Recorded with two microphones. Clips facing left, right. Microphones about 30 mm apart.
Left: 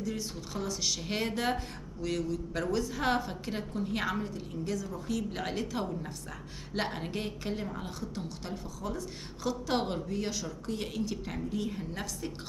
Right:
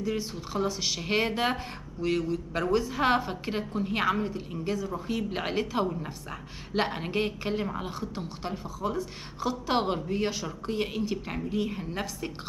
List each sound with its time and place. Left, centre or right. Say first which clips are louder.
0.0 s speech: right 5 dB; right